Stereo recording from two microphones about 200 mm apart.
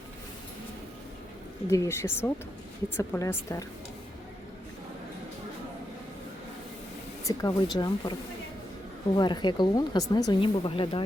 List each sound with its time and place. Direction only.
1.6 s speech: 15° left (ahead or behind)
7.3 s speech: 20° left (ahead or behind)
9.1 s speech: 20° left (ahead or behind)